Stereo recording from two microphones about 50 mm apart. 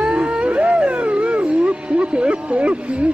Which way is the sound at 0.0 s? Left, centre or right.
Right.